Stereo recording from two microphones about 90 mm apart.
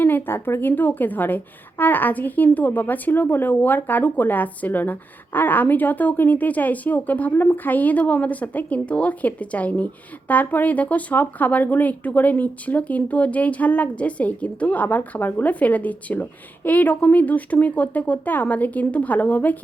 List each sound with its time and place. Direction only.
0.0 s a woman's voice: 25° left (ahead or behind)